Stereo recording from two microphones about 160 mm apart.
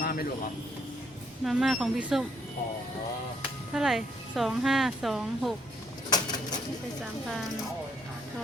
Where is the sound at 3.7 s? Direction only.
Centre (ahead or behind).